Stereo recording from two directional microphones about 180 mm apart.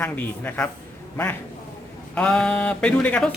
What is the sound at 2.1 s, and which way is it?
Speech, 5° left (ahead or behind).